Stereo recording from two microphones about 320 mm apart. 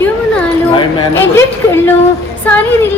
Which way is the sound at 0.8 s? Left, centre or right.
Centre.